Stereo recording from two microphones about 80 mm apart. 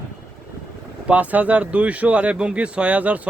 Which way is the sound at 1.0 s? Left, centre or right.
Centre.